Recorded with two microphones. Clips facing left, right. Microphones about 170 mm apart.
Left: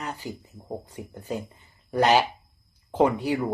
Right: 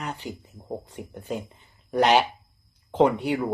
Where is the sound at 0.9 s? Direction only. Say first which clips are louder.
Right 1 dB; 70° right (ahead or behind).